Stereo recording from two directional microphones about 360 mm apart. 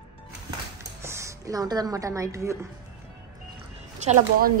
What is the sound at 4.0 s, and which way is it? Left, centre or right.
Speech, centre.